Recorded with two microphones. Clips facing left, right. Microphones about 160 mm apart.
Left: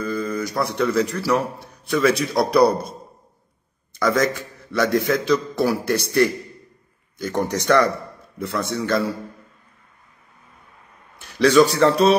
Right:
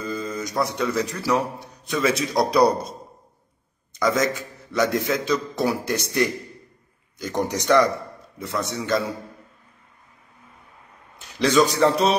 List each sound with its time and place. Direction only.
0.0 s a man's voice: 20° right (ahead or behind)
3.9 s a man's voice: 20° right (ahead or behind)
11.1 s a man's voice: 20° right (ahead or behind)